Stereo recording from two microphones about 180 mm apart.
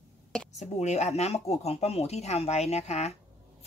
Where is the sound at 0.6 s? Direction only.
40° left (ahead or behind).